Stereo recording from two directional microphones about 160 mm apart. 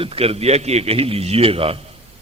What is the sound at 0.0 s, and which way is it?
A man's voice, 35° right (ahead or behind).